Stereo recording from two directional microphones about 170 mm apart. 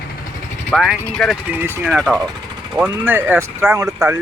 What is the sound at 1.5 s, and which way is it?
Speech, 15° right (ahead or behind).